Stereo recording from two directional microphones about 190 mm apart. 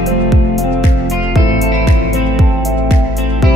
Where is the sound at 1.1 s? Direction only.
Centre (ahead or behind).